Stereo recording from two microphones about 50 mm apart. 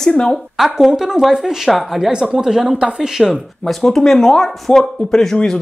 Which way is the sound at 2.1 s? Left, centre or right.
Centre.